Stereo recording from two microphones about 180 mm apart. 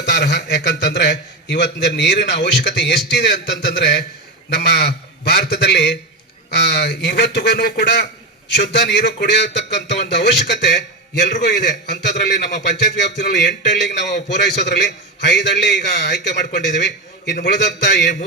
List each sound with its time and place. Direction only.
0.0 s a man's voice: 70° left (ahead or behind)